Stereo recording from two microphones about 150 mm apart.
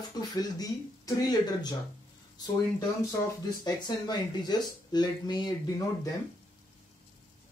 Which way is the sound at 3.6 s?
25° left (ahead or behind).